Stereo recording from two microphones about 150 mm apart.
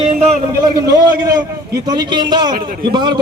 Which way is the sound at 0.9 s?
25° right (ahead or behind).